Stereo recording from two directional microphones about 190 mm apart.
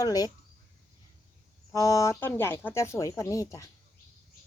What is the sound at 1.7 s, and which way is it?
Speech, 15° left (ahead or behind).